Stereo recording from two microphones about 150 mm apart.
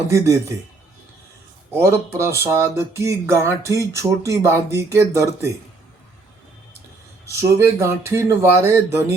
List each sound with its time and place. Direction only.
0.1 s speech: 20° right (ahead or behind)
1.7 s speech: 20° right (ahead or behind)
7.3 s speech: 20° right (ahead or behind)